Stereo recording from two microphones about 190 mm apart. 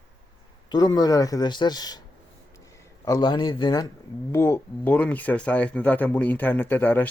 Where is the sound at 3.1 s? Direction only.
20° left (ahead or behind).